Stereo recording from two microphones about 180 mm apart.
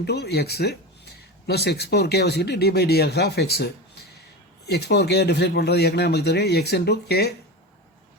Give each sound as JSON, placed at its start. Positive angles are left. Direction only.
{"t": 0.0, "sound": "speech", "side_deg": 65}